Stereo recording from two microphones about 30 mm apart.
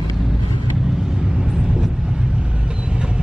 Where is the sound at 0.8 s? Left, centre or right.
Centre.